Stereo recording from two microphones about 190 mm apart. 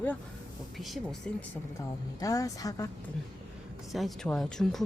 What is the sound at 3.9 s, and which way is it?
Speech, centre (ahead or behind).